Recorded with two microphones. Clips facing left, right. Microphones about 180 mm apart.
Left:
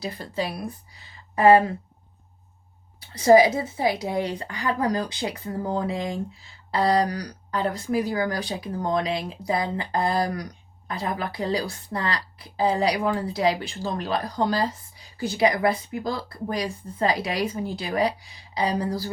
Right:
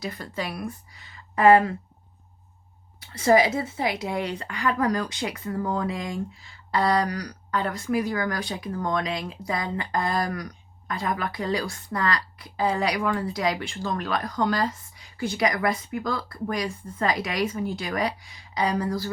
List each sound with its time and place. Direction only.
0.0 s speech: 30° left (ahead or behind)
3.0 s speech: 30° left (ahead or behind)